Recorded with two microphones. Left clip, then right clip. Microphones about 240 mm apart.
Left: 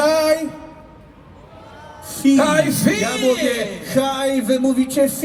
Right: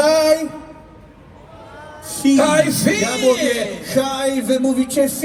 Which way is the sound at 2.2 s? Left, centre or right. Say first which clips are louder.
Right 1 dB; centre.